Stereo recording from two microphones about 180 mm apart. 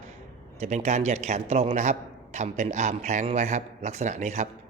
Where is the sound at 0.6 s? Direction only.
40° right (ahead or behind).